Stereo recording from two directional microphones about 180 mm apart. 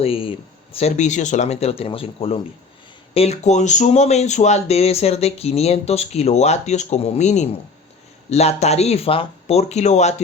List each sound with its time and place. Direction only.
0.0 s speech: 30° left (ahead or behind)